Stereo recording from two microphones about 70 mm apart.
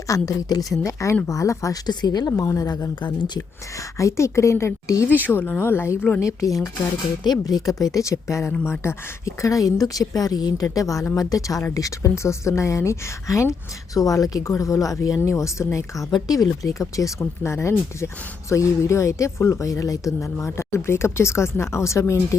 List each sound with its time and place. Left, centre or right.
0.1 s a woman's voice: left
0.9 s speech: left
1.9 s speech: left
2.3 s speech: left
5.2 s speech: left
6.1 s a woman's voice: left
16.1 s speech: left